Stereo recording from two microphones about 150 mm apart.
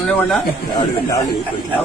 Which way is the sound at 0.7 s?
20° left (ahead or behind).